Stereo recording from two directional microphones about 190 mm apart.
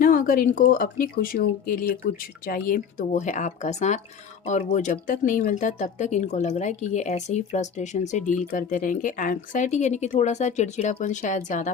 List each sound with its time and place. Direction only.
0.0 s speech: 45° left (ahead or behind)